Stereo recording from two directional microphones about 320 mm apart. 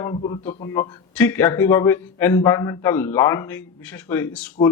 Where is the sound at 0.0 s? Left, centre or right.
Centre.